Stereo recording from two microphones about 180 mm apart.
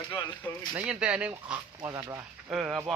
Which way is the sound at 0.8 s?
5° right (ahead or behind).